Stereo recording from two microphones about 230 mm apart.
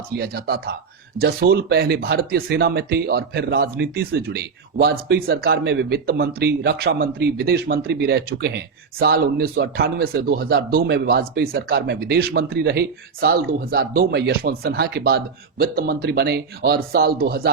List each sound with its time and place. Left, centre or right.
0.2 s speech: right